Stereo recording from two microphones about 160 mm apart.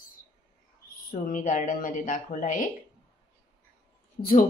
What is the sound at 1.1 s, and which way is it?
Speech, 55° left (ahead or behind).